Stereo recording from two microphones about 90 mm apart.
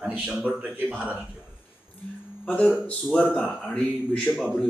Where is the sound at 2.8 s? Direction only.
15° left (ahead or behind).